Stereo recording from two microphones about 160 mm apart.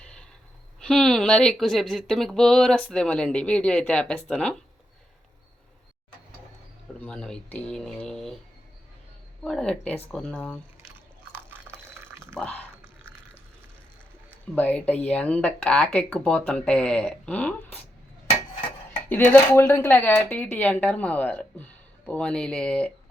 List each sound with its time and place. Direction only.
0.0 s a sound: 5° left (ahead or behind)
0.8 s speech: 5° left (ahead or behind)
7.0 s speech: 5° left (ahead or behind)
9.4 s speech: 5° left (ahead or behind)
11.3 s a sound: 15° right (ahead or behind)
12.4 s speech: 10° left (ahead or behind)
14.5 s speech: 10° left (ahead or behind)
19.0 s speech: 10° left (ahead or behind)